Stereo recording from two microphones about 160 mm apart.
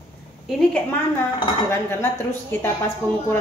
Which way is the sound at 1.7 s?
15° left (ahead or behind).